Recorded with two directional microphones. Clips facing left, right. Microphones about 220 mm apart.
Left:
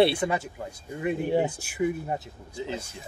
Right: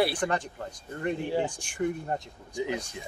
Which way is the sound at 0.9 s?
5° left (ahead or behind).